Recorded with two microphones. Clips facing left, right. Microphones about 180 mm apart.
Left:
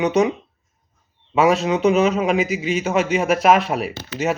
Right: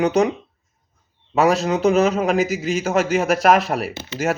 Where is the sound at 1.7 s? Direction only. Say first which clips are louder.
Even; 5° right (ahead or behind).